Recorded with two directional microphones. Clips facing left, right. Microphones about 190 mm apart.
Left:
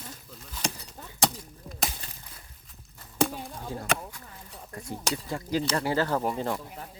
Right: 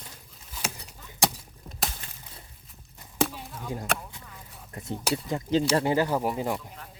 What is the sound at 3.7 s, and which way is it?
Speech, 20° right (ahead or behind).